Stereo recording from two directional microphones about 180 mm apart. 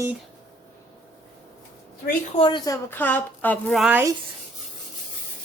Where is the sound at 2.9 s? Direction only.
10° left (ahead or behind).